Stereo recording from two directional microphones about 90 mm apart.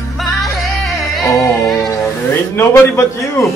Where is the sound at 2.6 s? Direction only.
30° left (ahead or behind).